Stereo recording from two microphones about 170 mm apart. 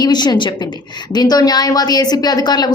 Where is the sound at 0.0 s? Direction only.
25° left (ahead or behind).